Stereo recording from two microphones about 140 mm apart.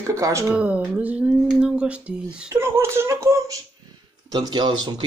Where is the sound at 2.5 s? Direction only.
20° right (ahead or behind).